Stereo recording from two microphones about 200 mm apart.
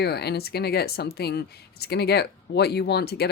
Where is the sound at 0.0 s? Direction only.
55° left (ahead or behind).